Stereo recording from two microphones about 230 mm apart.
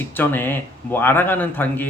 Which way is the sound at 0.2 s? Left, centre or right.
Centre.